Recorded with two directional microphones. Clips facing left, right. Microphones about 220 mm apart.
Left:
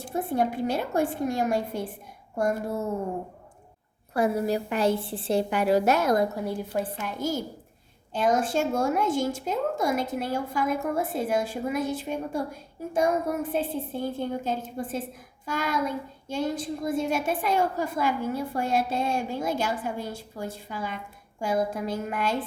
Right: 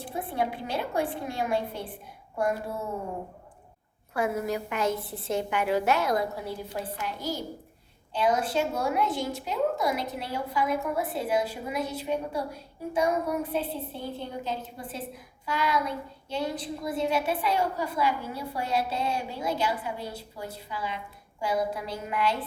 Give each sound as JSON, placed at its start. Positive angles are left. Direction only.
{"t": 0.1, "sound": "a woman's voice", "side_deg": 45}
{"t": 4.1, "sound": "a woman's voice", "side_deg": 35}